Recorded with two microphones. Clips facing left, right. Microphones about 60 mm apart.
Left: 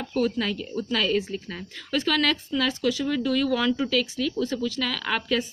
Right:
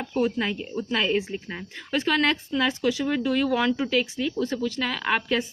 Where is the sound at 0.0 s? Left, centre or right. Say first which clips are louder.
Even; right.